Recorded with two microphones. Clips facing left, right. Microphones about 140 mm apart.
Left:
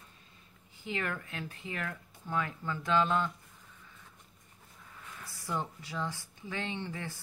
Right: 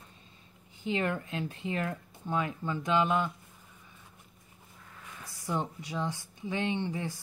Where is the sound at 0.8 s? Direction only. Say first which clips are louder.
Right 6 dB; 25° right (ahead or behind).